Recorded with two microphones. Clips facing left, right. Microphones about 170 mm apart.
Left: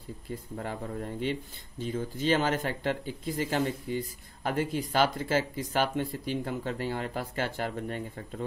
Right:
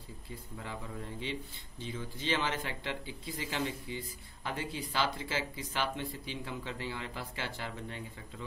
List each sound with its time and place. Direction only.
0.6 s speech: 50° left (ahead or behind)